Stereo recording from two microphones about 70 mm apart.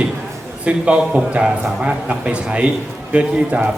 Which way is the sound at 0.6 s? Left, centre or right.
Centre.